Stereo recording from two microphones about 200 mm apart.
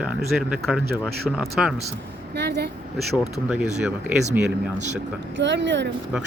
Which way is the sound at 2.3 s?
55° right (ahead or behind).